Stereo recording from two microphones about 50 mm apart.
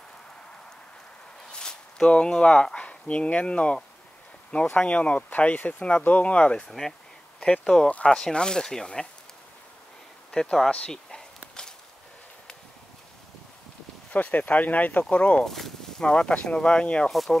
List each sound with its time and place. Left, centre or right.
1.5 s speech: centre
10.3 s a sound: centre
14.1 s speech: left
15.4 s speech: centre
16.0 s speech: centre
17.1 s speech: centre